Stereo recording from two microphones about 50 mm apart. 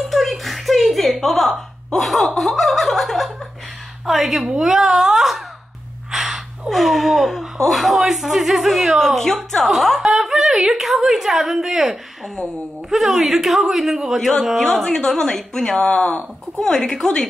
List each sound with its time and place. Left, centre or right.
0.1 s a sound: centre
4.0 s speech: centre
6.1 s gasp: centre
6.7 s a woman's voice: centre
14.6 s speech: centre